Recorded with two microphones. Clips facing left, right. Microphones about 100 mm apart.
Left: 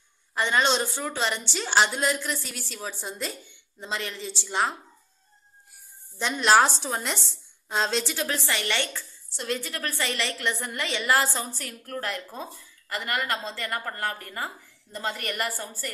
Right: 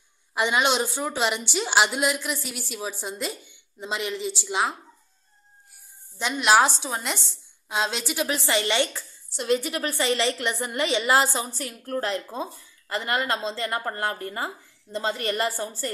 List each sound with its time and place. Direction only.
0.3 s a woman's voice: 10° right (ahead or behind)
6.1 s a woman's voice: 5° right (ahead or behind); by 15.9 s 25° right (ahead or behind)